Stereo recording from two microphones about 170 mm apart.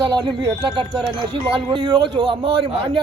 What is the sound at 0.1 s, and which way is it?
Speech, 25° right (ahead or behind).